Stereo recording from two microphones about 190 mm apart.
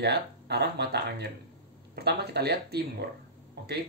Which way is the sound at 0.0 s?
60° right (ahead or behind).